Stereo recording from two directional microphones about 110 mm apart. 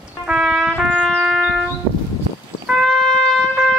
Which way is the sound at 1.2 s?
5° right (ahead or behind).